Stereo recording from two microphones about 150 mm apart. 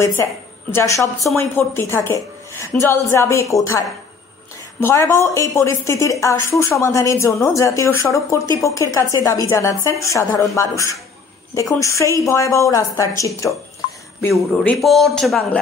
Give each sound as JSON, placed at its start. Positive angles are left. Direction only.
{"t": 0.2, "sound": "a woman's voice", "side_deg": 15}
{"t": 14.3, "sound": "speech", "side_deg": 5}